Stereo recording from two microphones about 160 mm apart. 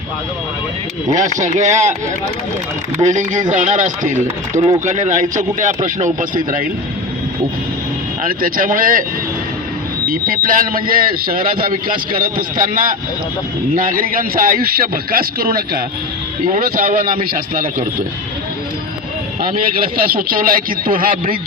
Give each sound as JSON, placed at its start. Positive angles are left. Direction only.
{"t": 1.1, "sound": "a man's voice", "side_deg": -50}
{"t": 3.0, "sound": "a man's voice", "side_deg": -50}
{"t": 4.5, "sound": "speech", "side_deg": -15}
{"t": 4.9, "sound": "a man's voice", "side_deg": -50}
{"t": 8.2, "sound": "speech", "side_deg": -60}
{"t": 10.1, "sound": "speech", "side_deg": -60}
{"t": 13.7, "sound": "speech", "side_deg": -60}
{"t": 19.4, "sound": "speech", "side_deg": -60}